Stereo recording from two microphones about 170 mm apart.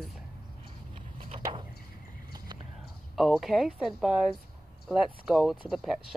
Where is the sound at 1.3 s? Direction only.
30° right (ahead or behind).